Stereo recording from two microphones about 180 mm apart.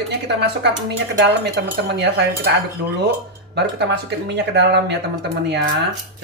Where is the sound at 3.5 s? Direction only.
70° right (ahead or behind).